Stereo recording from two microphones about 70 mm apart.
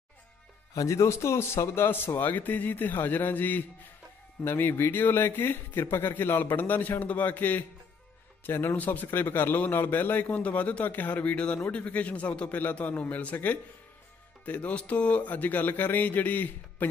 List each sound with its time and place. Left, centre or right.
0.7 s speech: left